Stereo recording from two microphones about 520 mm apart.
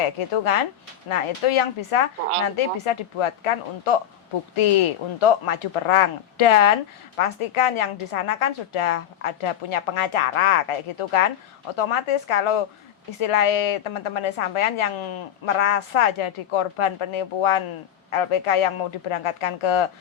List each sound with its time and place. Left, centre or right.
0.2 s a woman's voice: left
7.8 s a woman's voice: left